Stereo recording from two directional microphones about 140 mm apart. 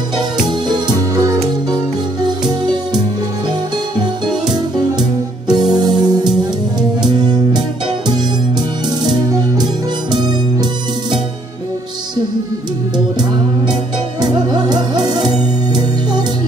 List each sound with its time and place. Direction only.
0.4 s music: 30° right (ahead or behind)
5.5 s music: 30° right (ahead or behind)
9.0 s music: 30° right (ahead or behind)
14.2 s music: 30° right (ahead or behind)